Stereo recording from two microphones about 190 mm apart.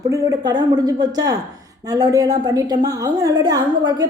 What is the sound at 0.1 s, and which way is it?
A woman's voice, 20° right (ahead or behind).